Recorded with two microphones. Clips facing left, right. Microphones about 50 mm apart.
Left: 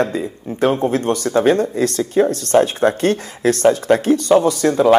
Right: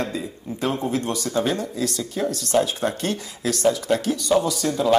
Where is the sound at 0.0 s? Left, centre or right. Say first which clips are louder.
Left 8 dB; left.